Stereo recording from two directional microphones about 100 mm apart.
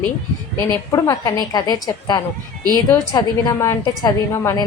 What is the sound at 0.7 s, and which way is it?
A woman's voice, 30° left (ahead or behind).